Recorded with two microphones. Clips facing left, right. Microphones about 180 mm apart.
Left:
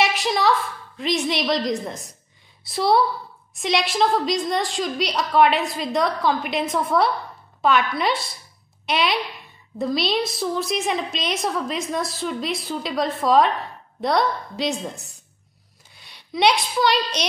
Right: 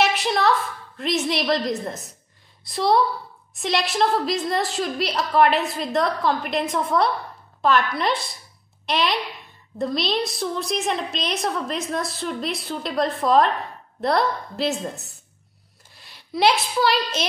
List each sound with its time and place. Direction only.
0.0 s a woman's voice: centre (ahead or behind)